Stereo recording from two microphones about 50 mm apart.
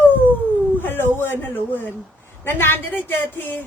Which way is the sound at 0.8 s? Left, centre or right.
Left.